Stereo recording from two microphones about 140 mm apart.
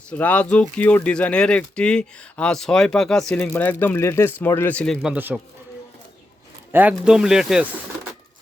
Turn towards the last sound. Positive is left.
turn(degrees=-5)  # may be behind; listen again after turning